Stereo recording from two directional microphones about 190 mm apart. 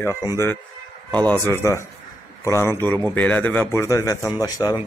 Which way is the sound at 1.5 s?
15° left (ahead or behind).